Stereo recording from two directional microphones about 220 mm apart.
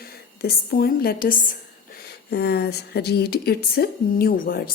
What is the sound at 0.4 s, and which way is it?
A woman's voice, 45° left (ahead or behind).